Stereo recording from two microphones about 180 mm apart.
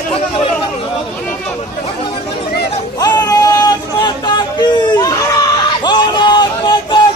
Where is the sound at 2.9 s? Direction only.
20° left (ahead or behind).